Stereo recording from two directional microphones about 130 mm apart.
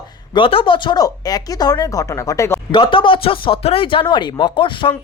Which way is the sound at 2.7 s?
40° left (ahead or behind).